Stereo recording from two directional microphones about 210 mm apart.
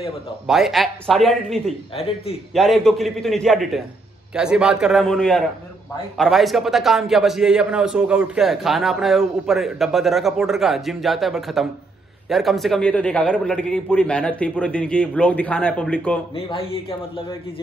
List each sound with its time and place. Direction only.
0.5 s a man's voice: centre (ahead or behind)
16.3 s speech: 25° left (ahead or behind)